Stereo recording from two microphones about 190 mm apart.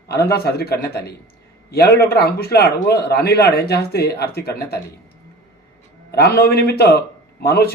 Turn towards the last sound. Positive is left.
turn(degrees=55)  # may be behind; listen again after turning